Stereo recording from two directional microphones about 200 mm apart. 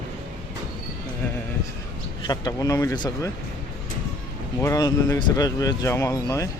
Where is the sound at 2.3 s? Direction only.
20° left (ahead or behind).